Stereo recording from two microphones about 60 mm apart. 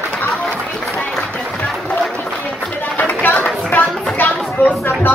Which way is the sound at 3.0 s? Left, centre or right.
Left.